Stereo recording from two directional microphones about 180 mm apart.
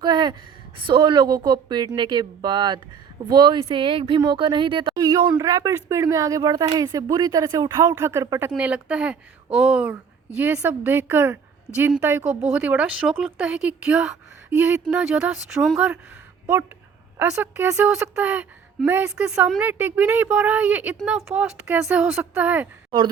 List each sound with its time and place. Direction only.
0.0 s a woman's voice: 25° right (ahead or behind); by 16.0 s 5° right (ahead or behind)
17.2 s a woman's voice: 10° right (ahead or behind)